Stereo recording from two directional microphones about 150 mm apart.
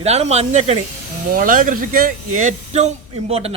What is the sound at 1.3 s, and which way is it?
Speech, 65° right (ahead or behind).